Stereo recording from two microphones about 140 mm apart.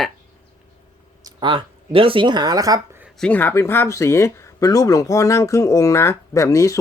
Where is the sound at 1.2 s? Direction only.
35° right (ahead or behind).